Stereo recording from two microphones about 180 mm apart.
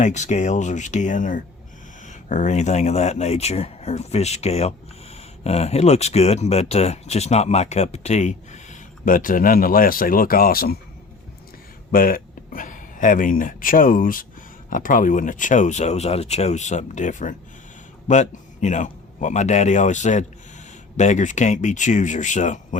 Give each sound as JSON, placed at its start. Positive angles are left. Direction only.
{"t": 0.0, "sound": "speech", "side_deg": 40}
{"t": 11.9, "sound": "speech", "side_deg": 50}